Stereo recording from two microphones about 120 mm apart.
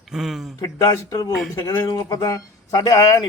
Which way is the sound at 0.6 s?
35° left (ahead or behind).